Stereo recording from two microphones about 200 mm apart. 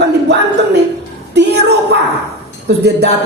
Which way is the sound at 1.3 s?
55° right (ahead or behind).